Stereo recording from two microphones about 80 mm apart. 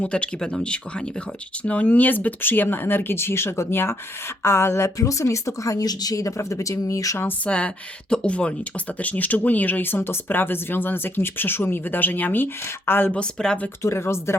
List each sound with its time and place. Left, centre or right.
0.0 s speech: centre; by 7.3 s left
7.3 s speech: centre
13.1 s speech: centre
13.8 s speech: left